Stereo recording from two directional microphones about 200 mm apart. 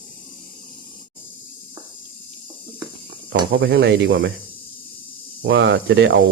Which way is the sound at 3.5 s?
50° right (ahead or behind).